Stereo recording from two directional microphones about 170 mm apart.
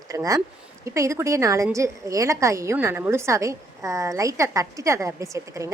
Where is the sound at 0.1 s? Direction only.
20° right (ahead or behind).